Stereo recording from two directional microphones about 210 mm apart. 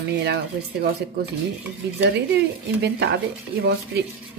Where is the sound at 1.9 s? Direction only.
55° right (ahead or behind).